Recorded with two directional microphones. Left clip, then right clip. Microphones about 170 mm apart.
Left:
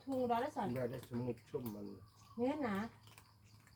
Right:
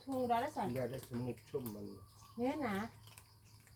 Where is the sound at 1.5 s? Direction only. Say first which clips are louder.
Right 3 dB; centre (ahead or behind).